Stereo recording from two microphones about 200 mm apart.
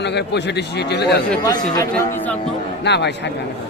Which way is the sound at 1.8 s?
10° left (ahead or behind).